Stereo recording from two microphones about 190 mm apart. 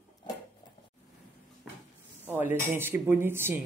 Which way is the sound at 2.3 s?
10° right (ahead or behind).